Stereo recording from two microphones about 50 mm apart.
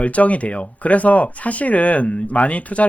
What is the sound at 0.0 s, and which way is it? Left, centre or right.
Speech, left.